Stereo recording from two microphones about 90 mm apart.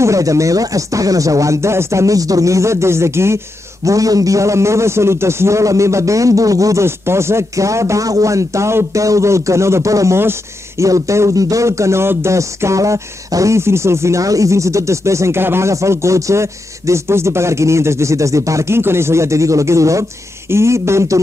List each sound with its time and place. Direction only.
0.0 s speech: 35° right (ahead or behind)